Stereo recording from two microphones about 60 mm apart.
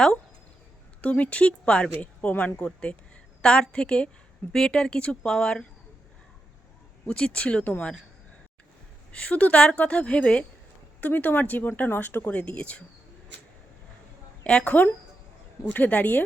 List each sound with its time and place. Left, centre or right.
1.0 s a woman's voice: left
7.1 s a woman's voice: centre
9.2 s a woman's voice: left
11.0 s speech: left
12.3 s a woman's voice: left
14.4 s a woman's voice: left